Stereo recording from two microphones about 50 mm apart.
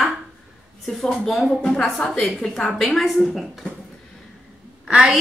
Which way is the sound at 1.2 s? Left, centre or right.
Centre.